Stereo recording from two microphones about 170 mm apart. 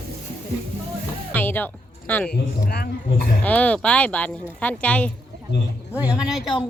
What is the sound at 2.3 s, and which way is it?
Speech, 70° left (ahead or behind).